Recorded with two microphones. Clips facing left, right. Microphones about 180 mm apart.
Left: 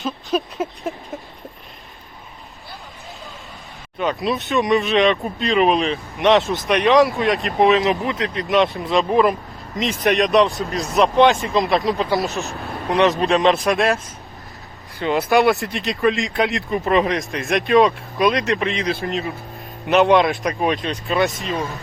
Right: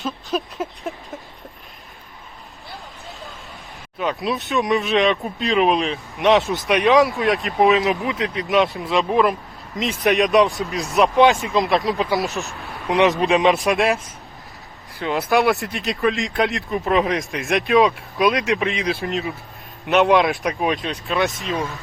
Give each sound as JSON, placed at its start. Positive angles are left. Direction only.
{"t": 0.0, "sound": "a sound", "side_deg": 0}
{"t": 3.9, "sound": "speech", "side_deg": 0}
{"t": 12.9, "sound": "speech", "side_deg": -15}
{"t": 13.5, "sound": "speech", "side_deg": 0}
{"t": 14.9, "sound": "speech", "side_deg": 0}